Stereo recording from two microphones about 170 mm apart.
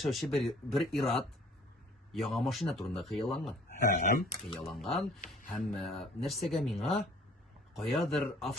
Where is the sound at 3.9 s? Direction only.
60° left (ahead or behind).